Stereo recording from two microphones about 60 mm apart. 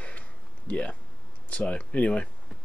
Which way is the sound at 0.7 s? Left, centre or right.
Left.